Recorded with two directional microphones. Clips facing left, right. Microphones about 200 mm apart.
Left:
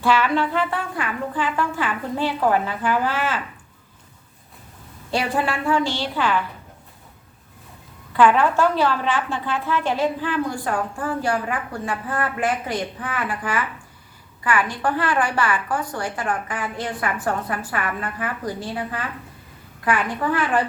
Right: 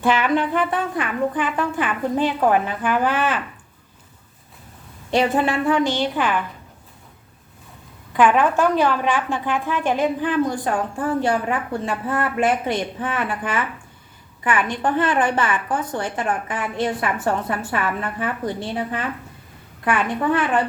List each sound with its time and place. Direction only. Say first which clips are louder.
0.0 s a woman's voice: right 1 dB; 20° right (ahead or behind)
5.1 s a woman's voice: right 4 dB; 20° right (ahead or behind)
8.1 s a woman's voice: even; 15° right (ahead or behind)